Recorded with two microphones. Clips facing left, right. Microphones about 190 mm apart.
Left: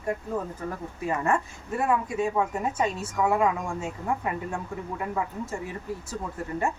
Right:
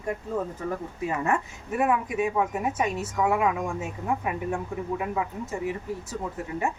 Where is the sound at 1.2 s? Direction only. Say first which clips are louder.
Left 1 dB; 15° right (ahead or behind).